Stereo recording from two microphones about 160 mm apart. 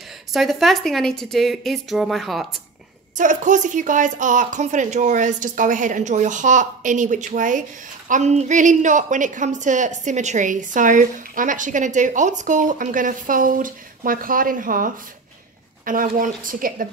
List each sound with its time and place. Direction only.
0.3 s speech: centre (ahead or behind)
3.2 s a woman's voice: 50° right (ahead or behind)